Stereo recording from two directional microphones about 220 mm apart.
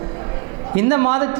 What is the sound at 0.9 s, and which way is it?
Speech, 20° right (ahead or behind).